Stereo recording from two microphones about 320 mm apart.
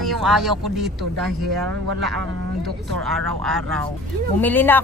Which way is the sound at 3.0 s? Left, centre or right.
Centre.